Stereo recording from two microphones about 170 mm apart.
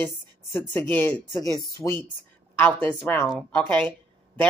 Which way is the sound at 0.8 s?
10° left (ahead or behind).